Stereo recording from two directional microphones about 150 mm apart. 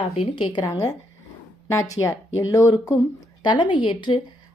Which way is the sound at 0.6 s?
20° left (ahead or behind).